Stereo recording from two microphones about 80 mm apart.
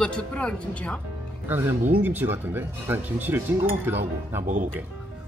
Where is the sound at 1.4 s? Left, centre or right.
Right.